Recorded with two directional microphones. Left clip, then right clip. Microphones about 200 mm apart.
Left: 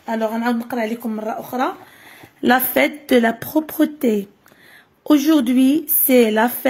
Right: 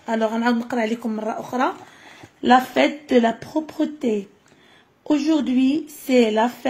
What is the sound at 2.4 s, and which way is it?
A woman's voice, 35° left (ahead or behind).